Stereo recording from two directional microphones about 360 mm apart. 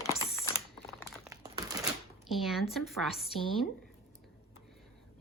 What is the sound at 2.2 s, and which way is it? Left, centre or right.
Speech, centre.